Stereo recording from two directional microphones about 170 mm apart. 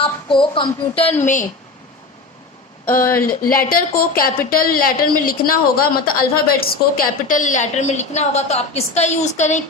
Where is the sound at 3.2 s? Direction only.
55° left (ahead or behind).